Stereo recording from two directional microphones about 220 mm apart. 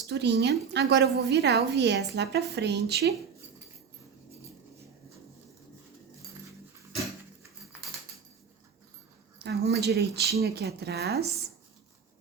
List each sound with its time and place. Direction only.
0.1 s a woman's voice: 50° right (ahead or behind)
9.4 s a woman's voice: 50° right (ahead or behind)